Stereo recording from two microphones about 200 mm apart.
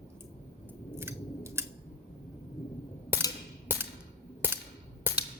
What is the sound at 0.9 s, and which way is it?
Scissors, 15° right (ahead or behind).